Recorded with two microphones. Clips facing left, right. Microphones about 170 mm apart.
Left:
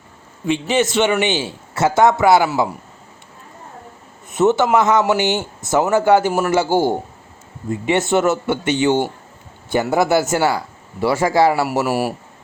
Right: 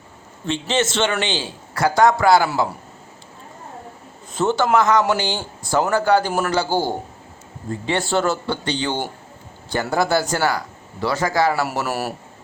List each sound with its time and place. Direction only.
0.4 s a man's voice: 15° left (ahead or behind)
4.4 s speech: centre (ahead or behind)
4.8 s speech: 25° left (ahead or behind)
11.6 s a man's voice: 10° left (ahead or behind)